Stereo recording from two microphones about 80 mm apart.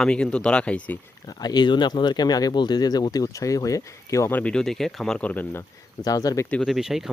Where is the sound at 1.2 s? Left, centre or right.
Left.